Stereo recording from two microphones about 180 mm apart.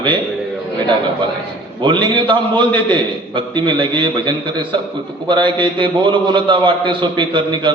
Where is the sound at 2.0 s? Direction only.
25° right (ahead or behind).